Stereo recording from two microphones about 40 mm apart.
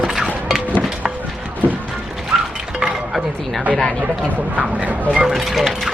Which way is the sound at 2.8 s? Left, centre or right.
Centre.